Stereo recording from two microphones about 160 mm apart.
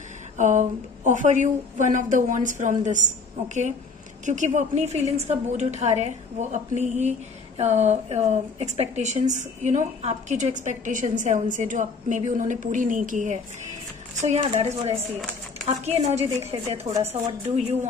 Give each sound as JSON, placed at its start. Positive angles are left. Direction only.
{"t": 0.4, "sound": "a woman's voice", "side_deg": -50}
{"t": 4.3, "sound": "a woman's voice", "side_deg": -50}